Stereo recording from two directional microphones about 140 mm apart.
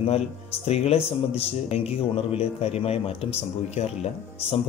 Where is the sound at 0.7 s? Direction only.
45° left (ahead or behind).